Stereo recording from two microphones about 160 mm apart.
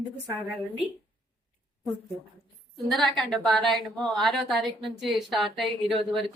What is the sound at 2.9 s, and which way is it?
A woman's voice, centre (ahead or behind).